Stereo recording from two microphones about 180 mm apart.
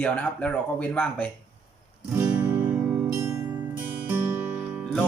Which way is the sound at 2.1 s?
10° right (ahead or behind).